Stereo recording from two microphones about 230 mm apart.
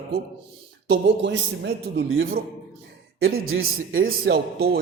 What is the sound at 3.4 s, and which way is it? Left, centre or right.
Speech, right.